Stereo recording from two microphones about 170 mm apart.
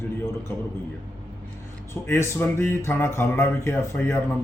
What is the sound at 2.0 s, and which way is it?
Speech, 15° left (ahead or behind).